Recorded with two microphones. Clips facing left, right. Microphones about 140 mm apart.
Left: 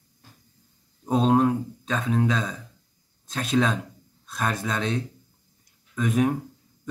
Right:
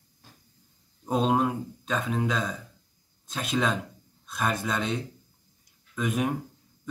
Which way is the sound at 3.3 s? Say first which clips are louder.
Left 4 dB; 5° right (ahead or behind).